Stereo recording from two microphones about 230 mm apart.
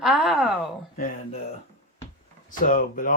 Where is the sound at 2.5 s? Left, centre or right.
Left.